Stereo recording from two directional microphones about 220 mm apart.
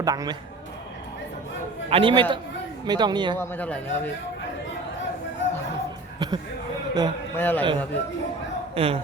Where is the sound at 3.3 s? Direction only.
10° left (ahead or behind).